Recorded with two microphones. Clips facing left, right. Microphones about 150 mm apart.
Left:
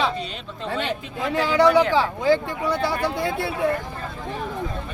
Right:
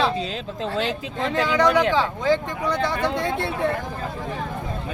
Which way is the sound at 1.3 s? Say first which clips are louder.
Left 1 dB; 20° right (ahead or behind).